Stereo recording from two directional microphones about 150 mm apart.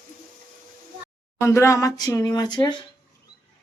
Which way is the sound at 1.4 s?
20° left (ahead or behind).